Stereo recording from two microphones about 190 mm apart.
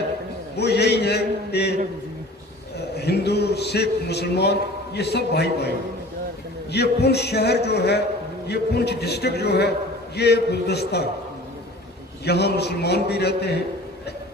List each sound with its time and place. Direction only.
0.5 s a man's voice: 60° left (ahead or behind)
2.7 s a man's voice: 60° left (ahead or behind)
12.2 s a man's voice: 60° left (ahead or behind)